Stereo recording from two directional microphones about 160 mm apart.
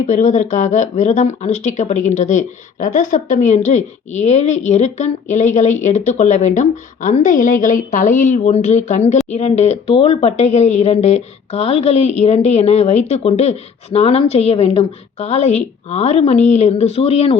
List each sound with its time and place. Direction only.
0.1 s speech: 50° left (ahead or behind)